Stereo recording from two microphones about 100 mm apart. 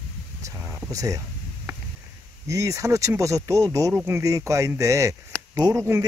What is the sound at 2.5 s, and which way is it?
Speech, 30° right (ahead or behind).